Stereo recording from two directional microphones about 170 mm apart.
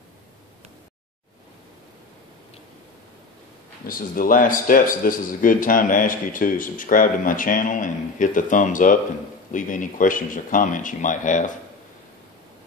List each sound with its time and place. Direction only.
3.8 s a man's voice: 55° left (ahead or behind)